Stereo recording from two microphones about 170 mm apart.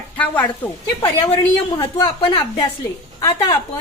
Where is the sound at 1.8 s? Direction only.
25° left (ahead or behind).